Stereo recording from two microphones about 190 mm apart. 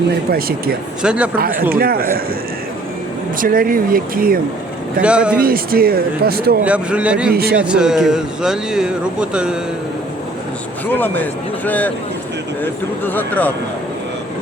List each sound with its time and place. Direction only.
0.3 s speech: 50° right (ahead or behind)
1.0 s speech: 5° right (ahead or behind)
1.4 s speech: 45° right (ahead or behind)
3.4 s speech: 50° right (ahead or behind)
5.0 s speech: 5° right (ahead or behind)
5.4 s speech: 50° right (ahead or behind)
6.7 s speech: 5° right (ahead or behind)
10.9 s speech: 10° left (ahead or behind)
13.1 s speech: 10° left (ahead or behind)